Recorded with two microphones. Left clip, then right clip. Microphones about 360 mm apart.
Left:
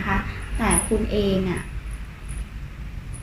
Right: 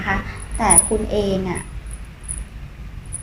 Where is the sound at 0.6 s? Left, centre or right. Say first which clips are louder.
Right 5 dB; centre.